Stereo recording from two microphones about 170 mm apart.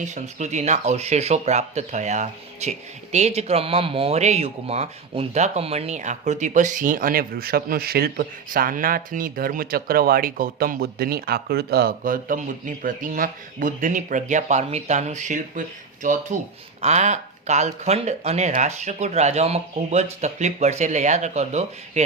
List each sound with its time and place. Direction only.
0.0 s speech: 45° right (ahead or behind)